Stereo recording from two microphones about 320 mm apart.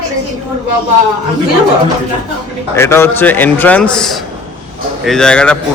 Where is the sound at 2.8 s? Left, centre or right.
Centre.